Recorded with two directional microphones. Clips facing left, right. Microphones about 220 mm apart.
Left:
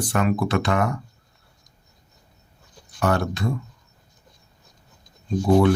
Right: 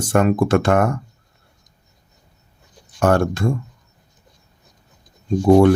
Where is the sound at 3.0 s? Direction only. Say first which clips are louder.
Right 6 dB; 50° right (ahead or behind).